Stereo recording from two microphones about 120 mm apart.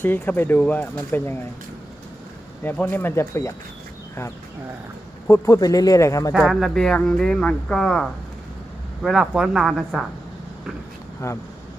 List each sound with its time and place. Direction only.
0.0 s speech: 15° left (ahead or behind)
2.6 s speech: 15° left (ahead or behind)
5.3 s speech: 30° left (ahead or behind)
6.3 s speech: 5° right (ahead or behind)
9.0 s speech: 5° right (ahead or behind)
11.2 s speech: 20° left (ahead or behind)